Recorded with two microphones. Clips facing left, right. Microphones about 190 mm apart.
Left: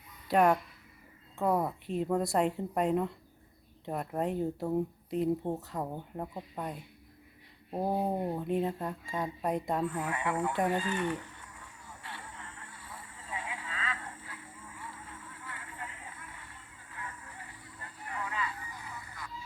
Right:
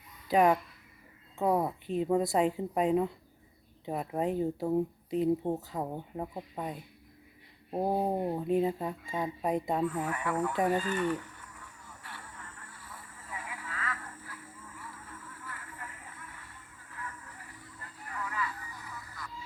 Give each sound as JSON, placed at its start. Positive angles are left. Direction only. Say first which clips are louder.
{"t": 0.3, "sound": "speech", "louder": "right 1 dB", "side_deg": 0}
{"t": 5.4, "sound": "speech", "louder": "right 2 dB", "side_deg": -15}
{"t": 7.7, "sound": "speech", "louder": "right 2 dB", "side_deg": -15}
{"t": 8.4, "sound": "speech", "louder": "right 3 dB", "side_deg": -5}
{"t": 10.1, "sound": "speech", "louder": "even", "side_deg": 25}
{"t": 10.8, "sound": "honk", "louder": "right 2 dB", "side_deg": 25}
{"t": 16.7, "sound": "vehicle", "louder": "right 1 dB", "side_deg": 30}